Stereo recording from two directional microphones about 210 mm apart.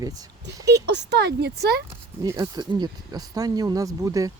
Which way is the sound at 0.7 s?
55° right (ahead or behind).